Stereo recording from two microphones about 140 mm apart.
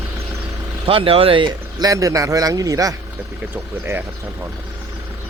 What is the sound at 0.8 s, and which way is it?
A man's voice, 40° right (ahead or behind).